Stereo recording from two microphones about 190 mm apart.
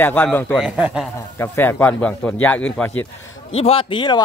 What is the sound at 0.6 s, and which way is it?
Speech, 5° right (ahead or behind).